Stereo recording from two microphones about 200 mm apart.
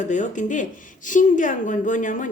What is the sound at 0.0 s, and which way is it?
A man's voice, 40° left (ahead or behind).